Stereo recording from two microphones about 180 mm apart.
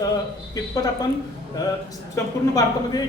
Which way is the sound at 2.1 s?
20° left (ahead or behind).